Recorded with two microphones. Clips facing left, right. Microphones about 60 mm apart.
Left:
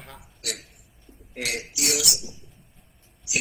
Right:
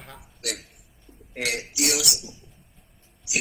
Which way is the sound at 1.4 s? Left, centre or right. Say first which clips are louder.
Right 2 dB; right.